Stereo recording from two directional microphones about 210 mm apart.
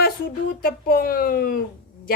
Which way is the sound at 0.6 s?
45° left (ahead or behind).